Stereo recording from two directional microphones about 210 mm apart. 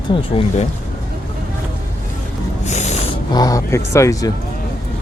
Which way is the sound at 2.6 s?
35° left (ahead or behind).